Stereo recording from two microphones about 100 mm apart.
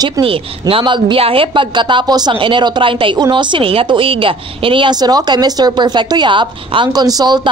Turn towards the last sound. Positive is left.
turn(degrees=-45)  # may be behind; listen again after turning